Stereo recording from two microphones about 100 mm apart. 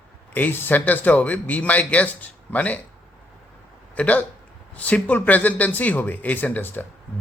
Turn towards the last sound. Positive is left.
turn(degrees=15)  # may be behind; listen again after turning